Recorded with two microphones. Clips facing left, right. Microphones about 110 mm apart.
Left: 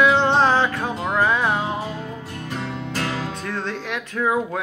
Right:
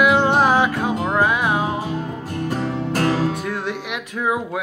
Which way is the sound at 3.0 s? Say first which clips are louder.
Right 8 dB; 40° right (ahead or behind).